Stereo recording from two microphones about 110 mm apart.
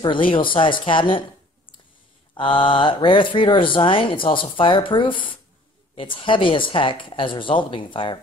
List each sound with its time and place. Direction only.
0.0 s speech: 50° left (ahead or behind)
2.3 s speech: 55° left (ahead or behind)